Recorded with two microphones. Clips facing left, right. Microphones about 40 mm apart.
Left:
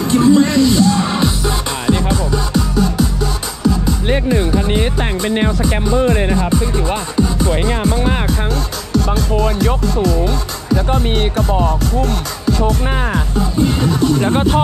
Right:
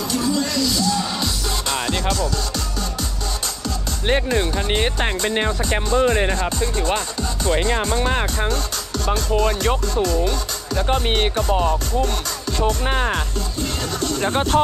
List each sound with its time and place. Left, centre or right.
0.1 s music: left; by 3.1 s centre
4.3 s music: centre
6.0 s speech: right
7.2 s music: centre
8.9 s speech: centre
11.6 s music: centre
13.4 s music: centre